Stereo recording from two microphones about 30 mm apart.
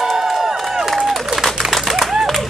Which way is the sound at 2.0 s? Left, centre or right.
Centre.